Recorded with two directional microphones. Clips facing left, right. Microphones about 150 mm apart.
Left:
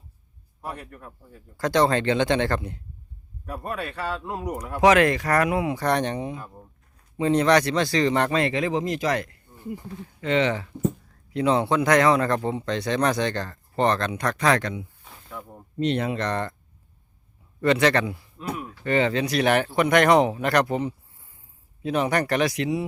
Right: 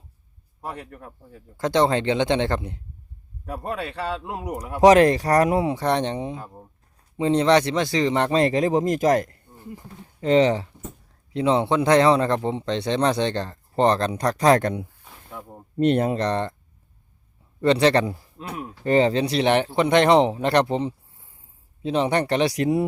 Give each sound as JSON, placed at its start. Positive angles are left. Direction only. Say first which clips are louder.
{"t": 0.7, "sound": "speech", "louder": "right 1 dB", "side_deg": -30}
{"t": 4.8, "sound": "speech", "louder": "right 4 dB", "side_deg": -35}
{"t": 8.3, "sound": "speech", "louder": "right 4 dB", "side_deg": -35}
{"t": 11.3, "sound": "speech", "louder": "right 1 dB", "side_deg": -20}
{"t": 15.3, "sound": "speech", "louder": "even", "side_deg": -20}
{"t": 15.8, "sound": "speech", "louder": "right 5 dB", "side_deg": -45}
{"t": 17.6, "sound": "a man's voice", "louder": "right 2 dB", "side_deg": -30}
{"t": 22.5, "sound": "speech", "louder": "right 5 dB", "side_deg": -50}